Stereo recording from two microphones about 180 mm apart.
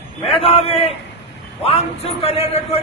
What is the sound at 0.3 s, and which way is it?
A man's voice, 30° left (ahead or behind).